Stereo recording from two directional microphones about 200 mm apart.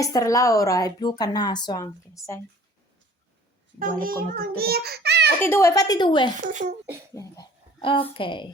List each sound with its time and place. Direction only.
0.0 s speech: 15° left (ahead or behind)
4.0 s a child's voice: 50° right (ahead or behind)
5.4 s a woman's voice: 15° left (ahead or behind)
6.5 s speech: 35° right (ahead or behind)
7.2 s a sound: 20° left (ahead or behind)
8.1 s a woman's voice: 25° left (ahead or behind)